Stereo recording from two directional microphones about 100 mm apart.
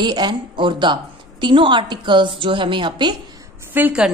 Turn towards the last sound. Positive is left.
turn(degrees=-20)  # may be behind; listen again after turning